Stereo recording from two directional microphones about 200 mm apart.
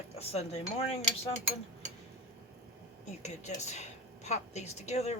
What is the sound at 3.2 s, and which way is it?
Speech, 35° left (ahead or behind).